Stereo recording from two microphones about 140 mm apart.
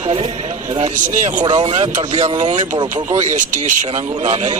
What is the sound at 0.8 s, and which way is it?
Speech, 70° right (ahead or behind).